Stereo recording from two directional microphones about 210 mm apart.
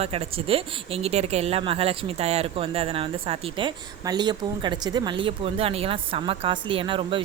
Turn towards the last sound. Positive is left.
turn(degrees=-25)  # may be behind; listen again after turning